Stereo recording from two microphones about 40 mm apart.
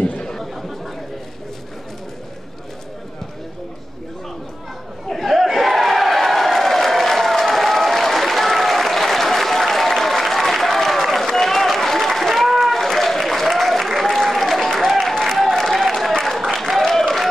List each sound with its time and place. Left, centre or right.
0.0 s chatter: left
0.3 s chatter: centre
5.1 s crowd: centre
11.2 s a sound: centre
15.2 s applause: centre